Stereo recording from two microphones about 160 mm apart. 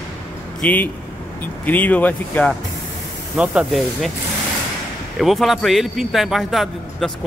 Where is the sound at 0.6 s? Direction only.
10° left (ahead or behind).